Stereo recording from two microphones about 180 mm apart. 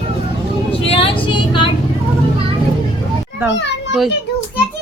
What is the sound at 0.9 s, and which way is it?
Vehicle, 30° left (ahead or behind).